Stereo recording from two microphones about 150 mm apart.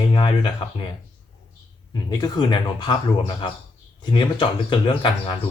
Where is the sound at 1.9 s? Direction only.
25° left (ahead or behind).